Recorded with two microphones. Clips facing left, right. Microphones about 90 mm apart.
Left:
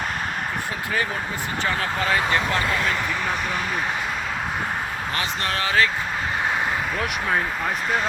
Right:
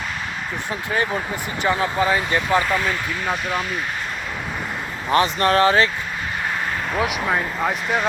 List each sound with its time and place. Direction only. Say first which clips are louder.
1.6 s speech: right 6 dB; 20° right (ahead or behind)
5.1 s speech: right 12 dB; 40° right (ahead or behind)